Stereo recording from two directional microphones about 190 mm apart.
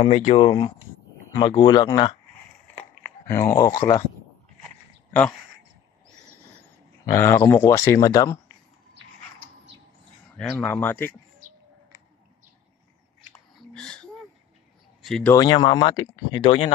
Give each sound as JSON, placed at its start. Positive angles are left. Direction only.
{"t": 0.0, "sound": "speech", "side_deg": 35}
{"t": 0.5, "sound": "speech", "side_deg": 25}
{"t": 3.3, "sound": "speech", "side_deg": 15}
{"t": 7.1, "sound": "speech", "side_deg": 15}
{"t": 10.3, "sound": "speech", "side_deg": 10}
{"t": 13.7, "sound": "a sound", "side_deg": 5}
{"t": 15.0, "sound": "speech", "side_deg": 0}
{"t": 15.3, "sound": "speech", "side_deg": 20}